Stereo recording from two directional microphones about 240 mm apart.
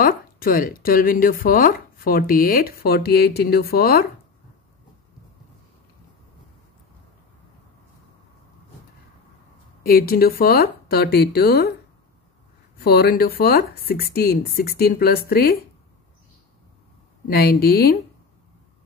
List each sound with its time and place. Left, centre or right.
0.0 s speech: left
9.8 s speech: left
12.7 s speech: left
17.3 s speech: left